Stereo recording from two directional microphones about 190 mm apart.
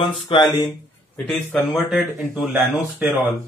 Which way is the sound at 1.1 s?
5° left (ahead or behind).